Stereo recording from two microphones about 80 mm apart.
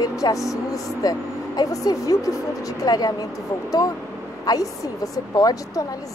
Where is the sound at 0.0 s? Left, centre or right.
Left.